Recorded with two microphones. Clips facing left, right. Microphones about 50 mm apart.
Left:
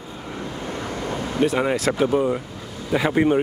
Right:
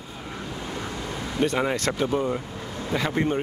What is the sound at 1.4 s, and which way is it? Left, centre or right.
Speech, centre.